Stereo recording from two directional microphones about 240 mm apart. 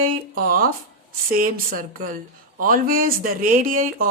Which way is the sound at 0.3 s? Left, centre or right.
Right.